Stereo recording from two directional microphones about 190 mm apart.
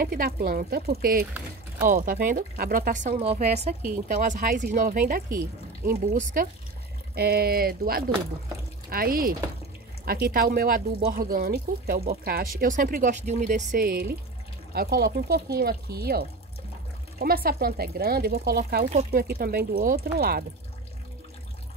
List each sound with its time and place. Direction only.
0.0 s speech: 50° right (ahead or behind)
18.9 s speech: 35° right (ahead or behind)
19.2 s speech: 55° right (ahead or behind)